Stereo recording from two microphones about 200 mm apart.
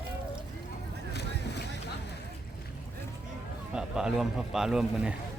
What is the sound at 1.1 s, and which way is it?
Vehicle, 55° left (ahead or behind).